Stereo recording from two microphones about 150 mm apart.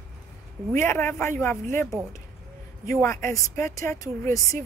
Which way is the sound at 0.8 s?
15° left (ahead or behind).